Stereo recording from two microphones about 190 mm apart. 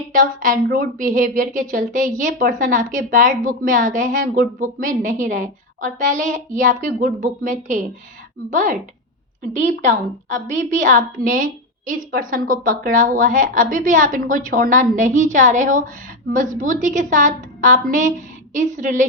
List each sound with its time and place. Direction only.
0.1 s a woman's voice: 45° right (ahead or behind)